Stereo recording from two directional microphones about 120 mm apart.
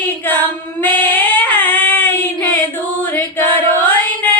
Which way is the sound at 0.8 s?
15° left (ahead or behind).